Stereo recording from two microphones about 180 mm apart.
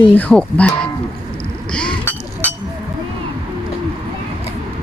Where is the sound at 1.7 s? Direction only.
5° left (ahead or behind).